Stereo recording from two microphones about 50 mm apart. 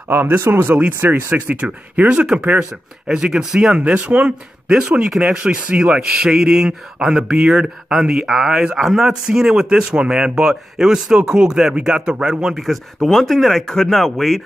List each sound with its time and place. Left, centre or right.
0.1 s speech: right
1.5 s speech: right
3.3 s speech: centre
3.7 s speech: right
4.6 s speech: centre
12.6 s speech: centre